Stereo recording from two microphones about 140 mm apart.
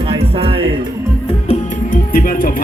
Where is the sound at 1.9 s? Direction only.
85° left.